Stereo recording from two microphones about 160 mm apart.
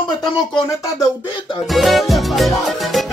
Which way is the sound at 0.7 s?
20° left (ahead or behind).